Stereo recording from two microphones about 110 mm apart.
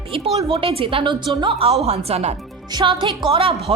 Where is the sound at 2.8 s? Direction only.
50° right (ahead or behind).